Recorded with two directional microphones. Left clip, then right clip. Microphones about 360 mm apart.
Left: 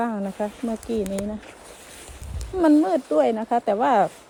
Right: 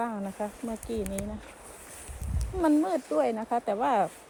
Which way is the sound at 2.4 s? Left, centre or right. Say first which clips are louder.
Left 7 dB; left.